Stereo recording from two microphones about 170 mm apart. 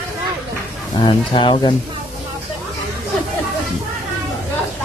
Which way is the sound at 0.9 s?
25° left (ahead or behind).